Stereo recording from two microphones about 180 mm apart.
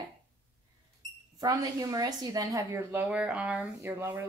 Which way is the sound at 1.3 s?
20° right (ahead or behind).